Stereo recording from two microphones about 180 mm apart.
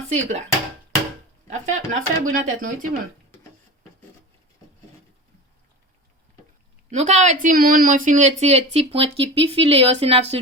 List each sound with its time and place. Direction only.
0.1 s speech: 40° right (ahead or behind)
1.7 s speech: 40° right (ahead or behind)
6.9 s speech: 40° right (ahead or behind)